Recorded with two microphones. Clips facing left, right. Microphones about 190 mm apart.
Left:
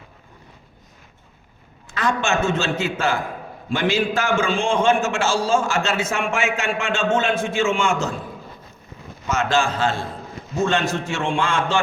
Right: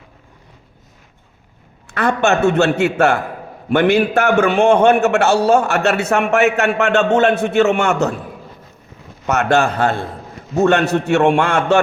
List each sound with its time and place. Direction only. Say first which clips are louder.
1.9 s a man's voice: right 6 dB; 60° right (ahead or behind)
9.2 s a man's voice: right 5 dB; 65° right (ahead or behind)